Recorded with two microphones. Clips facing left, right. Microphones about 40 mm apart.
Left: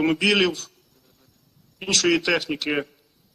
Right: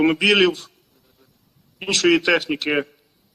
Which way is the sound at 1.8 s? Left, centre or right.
Centre.